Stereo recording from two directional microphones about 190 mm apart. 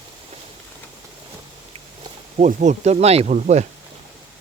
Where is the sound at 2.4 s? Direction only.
40° right (ahead or behind).